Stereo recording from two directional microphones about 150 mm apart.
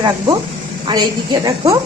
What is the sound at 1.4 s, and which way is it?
Speech, 20° right (ahead or behind).